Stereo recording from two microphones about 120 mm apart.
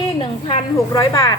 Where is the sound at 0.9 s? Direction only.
30° left (ahead or behind).